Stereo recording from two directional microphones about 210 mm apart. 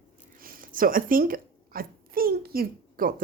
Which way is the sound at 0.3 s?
45° right (ahead or behind).